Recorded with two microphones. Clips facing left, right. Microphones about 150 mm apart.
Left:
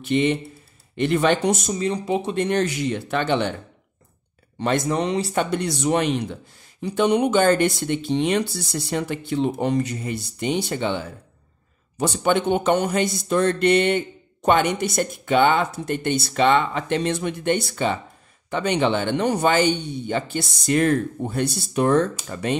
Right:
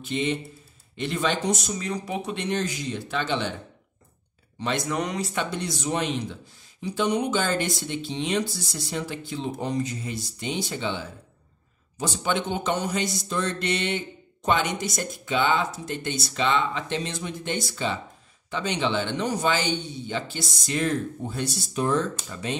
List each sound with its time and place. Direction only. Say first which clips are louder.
0.0 s speech: left 7 dB; 65° left (ahead or behind)
1.8 s speech: left 7 dB; 25° left (ahead or behind)
2.3 s speech: left 6 dB; 60° left (ahead or behind)
4.6 s speech: left 6 dB; 50° left (ahead or behind)
4.8 s speech: left 5 dB; 30° left (ahead or behind)
5.3 s speech: left 6 dB; 55° left (ahead or behind)